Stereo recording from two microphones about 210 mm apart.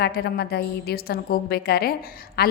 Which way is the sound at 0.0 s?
50° left (ahead or behind).